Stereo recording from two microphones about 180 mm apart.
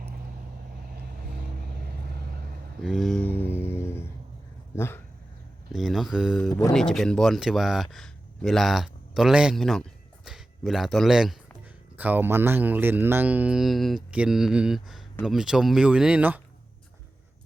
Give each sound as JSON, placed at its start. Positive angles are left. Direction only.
{"t": 1.6, "sound": "vehicle", "side_deg": -60}
{"t": 2.8, "sound": "a sound", "side_deg": 0}
{"t": 4.7, "sound": "speech", "side_deg": 15}
{"t": 5.7, "sound": "speech", "side_deg": 0}
{"t": 6.5, "sound": "speech", "side_deg": 20}
{"t": 6.7, "sound": "speech", "side_deg": 0}